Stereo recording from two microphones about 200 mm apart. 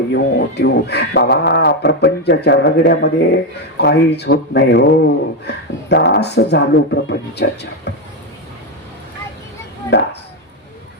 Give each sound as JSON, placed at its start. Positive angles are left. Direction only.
{"t": 0.1, "sound": "speech", "side_deg": 55}
{"t": 9.9, "sound": "speech", "side_deg": 60}